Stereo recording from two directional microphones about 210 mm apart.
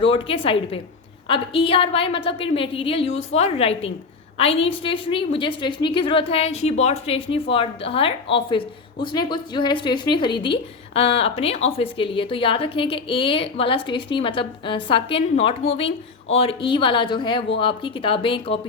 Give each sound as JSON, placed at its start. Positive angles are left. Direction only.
{"t": 0.0, "sound": "a woman's voice", "side_deg": 25}